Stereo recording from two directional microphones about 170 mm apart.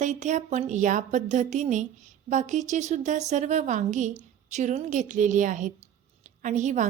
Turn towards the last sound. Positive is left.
turn(degrees=-45)  # may be behind; listen again after turning